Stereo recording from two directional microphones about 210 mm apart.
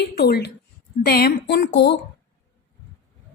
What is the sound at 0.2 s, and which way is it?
A woman's voice, 50° left (ahead or behind).